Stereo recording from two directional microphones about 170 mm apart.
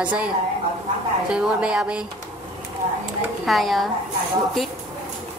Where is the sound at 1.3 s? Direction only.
5° right (ahead or behind).